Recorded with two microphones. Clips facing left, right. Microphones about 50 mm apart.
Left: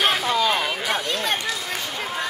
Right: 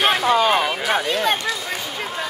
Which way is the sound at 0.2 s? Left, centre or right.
Right.